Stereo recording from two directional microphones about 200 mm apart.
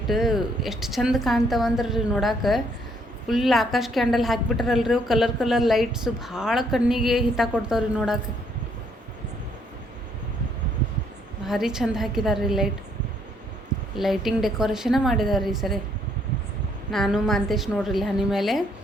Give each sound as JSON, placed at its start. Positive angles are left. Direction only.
{"t": 0.1, "sound": "a woman's voice", "side_deg": 0}
{"t": 11.4, "sound": "a woman's voice", "side_deg": 0}
{"t": 13.9, "sound": "a woman's voice", "side_deg": 0}
{"t": 16.9, "sound": "a woman's voice", "side_deg": 0}